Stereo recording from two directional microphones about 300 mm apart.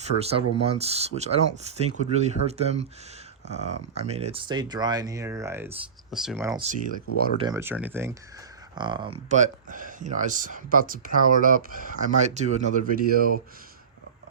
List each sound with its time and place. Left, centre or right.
0.1 s speech: left
0.6 s speech: centre
6.6 s speech: right
7.3 s speech: centre; by 13.4 s right